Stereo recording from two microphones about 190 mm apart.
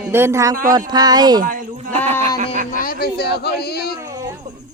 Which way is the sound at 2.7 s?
50° left (ahead or behind).